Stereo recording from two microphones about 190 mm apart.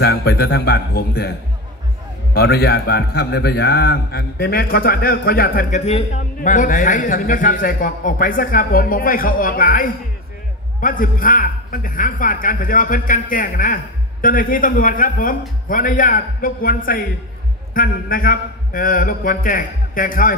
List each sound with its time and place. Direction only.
0.0 s a man's voice: 60° left (ahead or behind)
2.3 s a man's voice: 55° left (ahead or behind)